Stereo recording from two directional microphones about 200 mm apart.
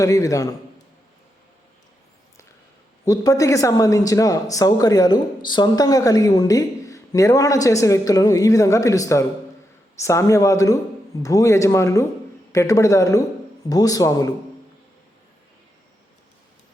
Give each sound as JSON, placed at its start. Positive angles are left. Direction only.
{"t": 0.0, "sound": "speech", "side_deg": 15}
{"t": 3.0, "sound": "speech", "side_deg": 15}